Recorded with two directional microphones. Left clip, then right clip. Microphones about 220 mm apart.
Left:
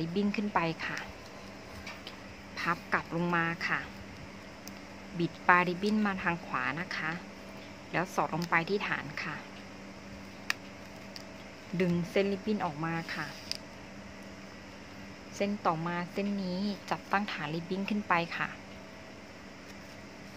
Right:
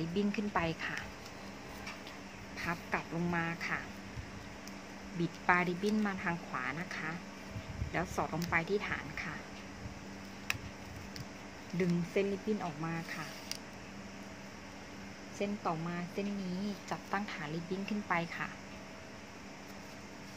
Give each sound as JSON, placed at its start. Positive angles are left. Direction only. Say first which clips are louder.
{"t": 0.0, "sound": "speech", "louder": "left 3 dB", "side_deg": 15}
{"t": 2.5, "sound": "speech", "louder": "left 6 dB", "side_deg": 25}
{"t": 5.2, "sound": "speech", "louder": "left 5 dB", "side_deg": 25}
{"t": 11.7, "sound": "speech", "louder": "left 4 dB", "side_deg": 30}
{"t": 15.3, "sound": "speech", "louder": "left 6 dB", "side_deg": 35}